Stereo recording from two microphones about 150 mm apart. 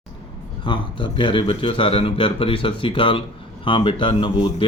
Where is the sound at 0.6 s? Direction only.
35° left (ahead or behind).